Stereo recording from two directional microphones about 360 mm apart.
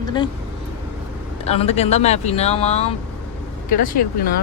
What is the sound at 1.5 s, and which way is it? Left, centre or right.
Speech, centre.